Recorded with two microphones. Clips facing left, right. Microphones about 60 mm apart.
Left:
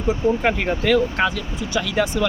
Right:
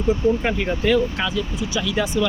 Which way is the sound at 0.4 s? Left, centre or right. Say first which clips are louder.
Left 1 dB; left.